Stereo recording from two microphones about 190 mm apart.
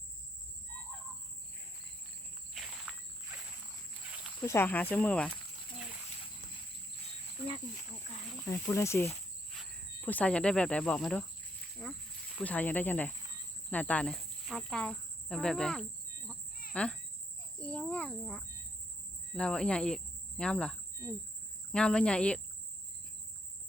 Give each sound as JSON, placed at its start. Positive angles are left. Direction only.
{"t": 2.5, "sound": "walk", "side_deg": 0}
{"t": 4.4, "sound": "speech", "side_deg": 15}
{"t": 8.4, "sound": "speech", "side_deg": 15}
{"t": 9.5, "sound": "speech", "side_deg": 0}
{"t": 11.8, "sound": "snake", "side_deg": 5}
{"t": 12.4, "sound": "speech", "side_deg": 10}
{"t": 17.6, "sound": "cricket", "side_deg": 5}
{"t": 19.3, "sound": "speech", "side_deg": 5}
{"t": 21.7, "sound": "cricket", "side_deg": 5}